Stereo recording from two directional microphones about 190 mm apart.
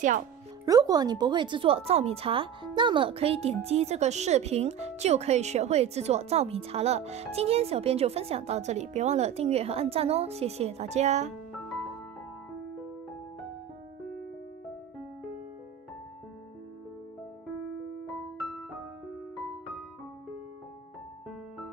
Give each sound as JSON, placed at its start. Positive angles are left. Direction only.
{"t": 0.7, "sound": "speech", "side_deg": -20}